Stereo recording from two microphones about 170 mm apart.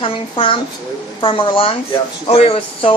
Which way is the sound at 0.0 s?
30° left (ahead or behind).